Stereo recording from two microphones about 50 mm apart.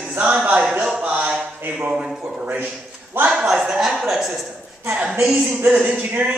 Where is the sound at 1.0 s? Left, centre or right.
Right.